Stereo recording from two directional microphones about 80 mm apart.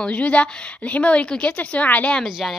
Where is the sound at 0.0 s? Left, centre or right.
Centre.